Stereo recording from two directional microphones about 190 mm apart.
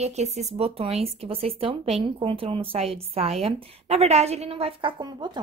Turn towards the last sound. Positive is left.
turn(degrees=-20)  # may be behind; listen again after turning